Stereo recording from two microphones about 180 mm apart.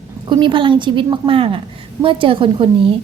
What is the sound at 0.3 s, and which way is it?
A woman's voice, 25° right (ahead or behind).